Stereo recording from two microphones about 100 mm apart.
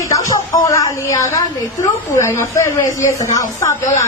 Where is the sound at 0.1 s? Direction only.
35° left (ahead or behind).